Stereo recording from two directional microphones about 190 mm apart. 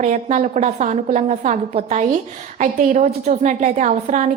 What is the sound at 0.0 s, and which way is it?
A woman's voice, 40° right (ahead or behind).